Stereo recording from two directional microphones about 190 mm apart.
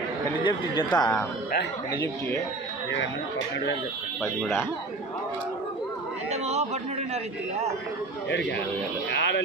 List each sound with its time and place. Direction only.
0.4 s speech: 25° left (ahead or behind)
2.9 s speech: 75° left (ahead or behind)
4.4 s speech: 10° left (ahead or behind)
6.3 s a sound: 35° right (ahead or behind)
8.3 s a man's voice: 65° left (ahead or behind)